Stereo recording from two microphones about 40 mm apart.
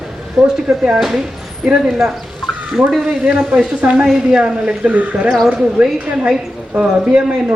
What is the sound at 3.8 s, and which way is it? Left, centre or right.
Speech, right.